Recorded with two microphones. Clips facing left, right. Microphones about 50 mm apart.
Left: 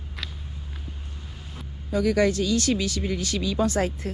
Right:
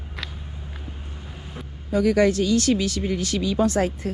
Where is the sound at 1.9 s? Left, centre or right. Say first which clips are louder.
Right 3 dB; right.